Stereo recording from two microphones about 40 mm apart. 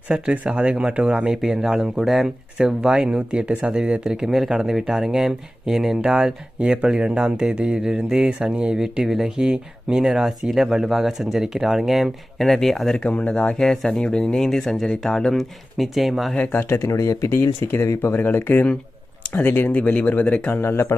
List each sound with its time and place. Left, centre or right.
0.1 s speech: right
1.3 s speech: centre
2.6 s speech: centre
3.2 s speech: right
3.6 s speech: centre
4.3 s speech: centre; by 8.7 s right
8.7 s speech: centre
13.1 s speech: left
13.7 s speech: centre
15.8 s speech: centre
16.6 s speech: left
19.4 s speech: left
19.7 s speech: left
20.5 s speech: left